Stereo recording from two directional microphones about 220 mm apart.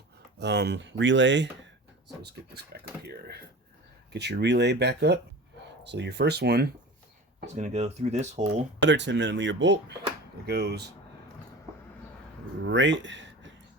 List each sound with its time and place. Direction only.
0.3 s speech: 50° right (ahead or behind)
7.4 s speech: 30° right (ahead or behind)
8.8 s speech: 55° right (ahead or behind)
12.6 s speech: 55° right (ahead or behind)